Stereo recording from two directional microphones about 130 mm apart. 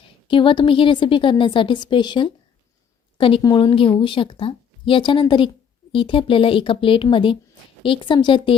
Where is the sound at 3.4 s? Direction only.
30° left (ahead or behind).